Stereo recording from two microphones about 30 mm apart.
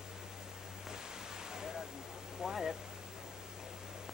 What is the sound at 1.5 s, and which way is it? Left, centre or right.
Waterfall, centre.